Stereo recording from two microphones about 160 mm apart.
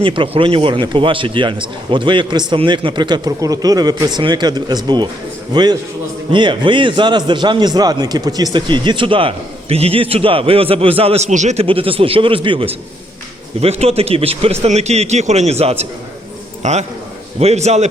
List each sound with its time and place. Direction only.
0.0 s a man's voice: 30° right (ahead or behind)